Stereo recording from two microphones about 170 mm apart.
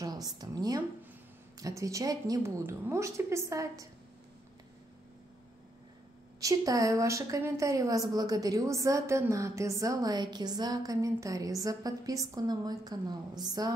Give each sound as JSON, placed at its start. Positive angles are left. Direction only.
{"t": 0.0, "sound": "a sound", "side_deg": -20}
{"t": 1.6, "sound": "a woman's voice", "side_deg": -20}
{"t": 6.4, "sound": "a woman's voice", "side_deg": -20}